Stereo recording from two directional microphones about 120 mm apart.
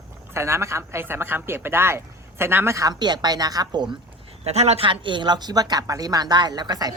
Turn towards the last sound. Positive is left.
turn(degrees=-35)  # may be behind; listen again after turning